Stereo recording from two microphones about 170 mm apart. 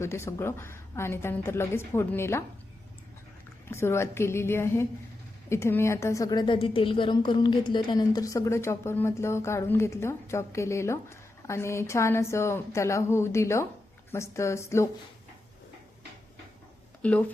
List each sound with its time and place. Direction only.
0.0 s a woman's voice: 15° left (ahead or behind)
3.7 s a woman's voice: 15° left (ahead or behind)
17.0 s speech: 10° left (ahead or behind)